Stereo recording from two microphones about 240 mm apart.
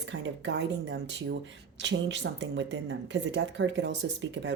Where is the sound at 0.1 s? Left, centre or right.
Right.